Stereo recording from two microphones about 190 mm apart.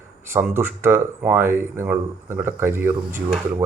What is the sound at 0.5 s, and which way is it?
Speech, 10° right (ahead or behind).